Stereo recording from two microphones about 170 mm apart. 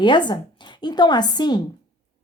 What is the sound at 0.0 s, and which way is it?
A woman's voice, 25° left (ahead or behind).